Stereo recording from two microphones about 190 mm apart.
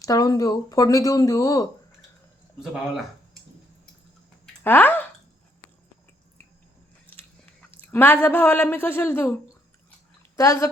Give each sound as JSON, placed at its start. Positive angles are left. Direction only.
{"t": 0.0, "sound": "speech", "side_deg": 20}
{"t": 4.6, "sound": "speech", "side_deg": 10}
{"t": 7.8, "sound": "speech", "side_deg": 10}
{"t": 10.3, "sound": "speech", "side_deg": 15}